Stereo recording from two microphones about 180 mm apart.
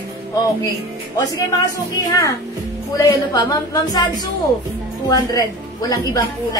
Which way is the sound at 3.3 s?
20° left (ahead or behind).